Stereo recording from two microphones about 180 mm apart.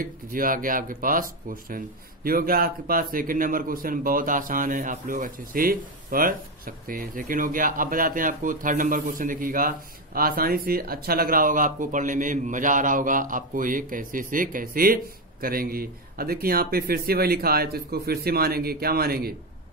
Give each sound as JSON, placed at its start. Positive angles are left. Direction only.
{"t": 0.0, "sound": "a man's voice", "side_deg": -50}